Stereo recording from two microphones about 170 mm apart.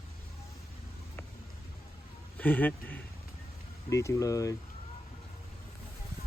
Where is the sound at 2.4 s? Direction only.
10° left (ahead or behind).